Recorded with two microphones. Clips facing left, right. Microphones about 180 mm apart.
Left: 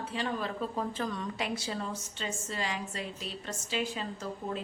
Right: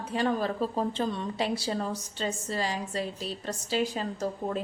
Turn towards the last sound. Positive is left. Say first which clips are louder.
# right 5 dB
turn(degrees=-40)  # may be behind; listen again after turning